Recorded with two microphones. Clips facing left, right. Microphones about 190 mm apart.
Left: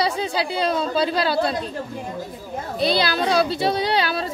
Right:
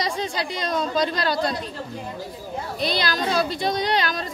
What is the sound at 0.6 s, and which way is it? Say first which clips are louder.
Speech: left 2 dB; 30° left (ahead or behind).